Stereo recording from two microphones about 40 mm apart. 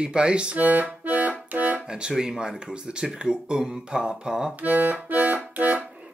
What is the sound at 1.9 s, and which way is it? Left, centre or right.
A man's voice, right.